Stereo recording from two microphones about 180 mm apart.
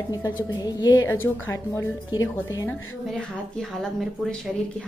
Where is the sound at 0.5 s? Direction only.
25° left (ahead or behind).